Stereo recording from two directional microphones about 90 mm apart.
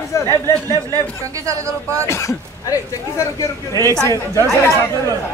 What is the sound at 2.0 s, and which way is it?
A man's voice, 35° left (ahead or behind).